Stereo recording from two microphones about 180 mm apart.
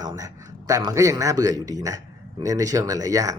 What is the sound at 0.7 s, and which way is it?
Speech, 20° right (ahead or behind).